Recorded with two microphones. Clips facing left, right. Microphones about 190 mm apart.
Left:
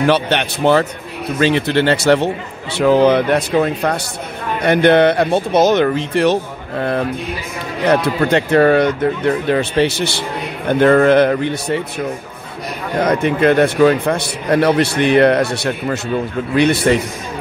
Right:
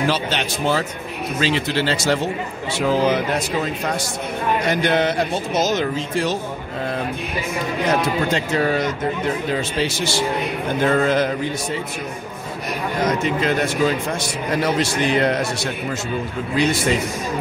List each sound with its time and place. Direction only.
0.0 s a man's voice: 60° left (ahead or behind)
7.9 s a man's voice: 60° left (ahead or behind)
13.0 s a man's voice: 60° left (ahead or behind)